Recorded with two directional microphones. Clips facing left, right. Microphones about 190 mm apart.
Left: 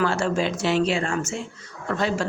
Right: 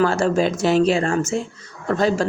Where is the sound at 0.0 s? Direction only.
40° right (ahead or behind).